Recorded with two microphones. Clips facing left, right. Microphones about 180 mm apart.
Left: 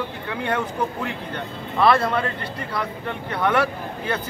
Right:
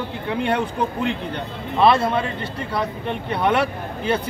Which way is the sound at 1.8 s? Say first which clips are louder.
Right 2 dB; 25° right (ahead or behind).